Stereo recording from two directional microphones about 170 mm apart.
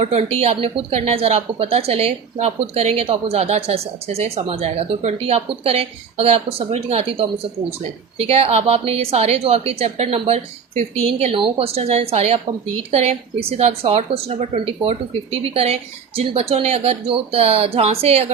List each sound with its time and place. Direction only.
0.0 s a woman's voice: 40° right (ahead or behind)